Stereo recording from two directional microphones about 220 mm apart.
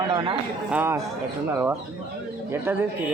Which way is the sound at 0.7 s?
10° right (ahead or behind).